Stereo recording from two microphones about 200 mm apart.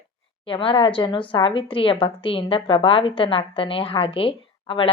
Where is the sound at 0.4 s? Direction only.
25° left (ahead or behind).